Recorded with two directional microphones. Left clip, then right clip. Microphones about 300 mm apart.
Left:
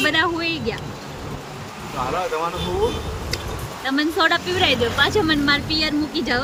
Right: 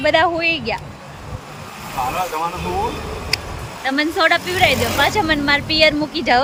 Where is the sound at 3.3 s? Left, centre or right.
Centre.